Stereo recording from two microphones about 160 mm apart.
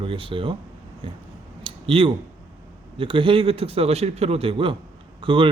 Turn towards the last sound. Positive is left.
turn(degrees=-30)  # may be behind; listen again after turning